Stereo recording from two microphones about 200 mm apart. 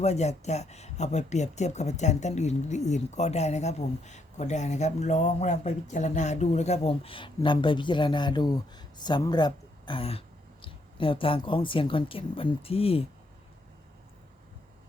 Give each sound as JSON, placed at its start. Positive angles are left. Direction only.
{"t": 0.0, "sound": "speech", "side_deg": 35}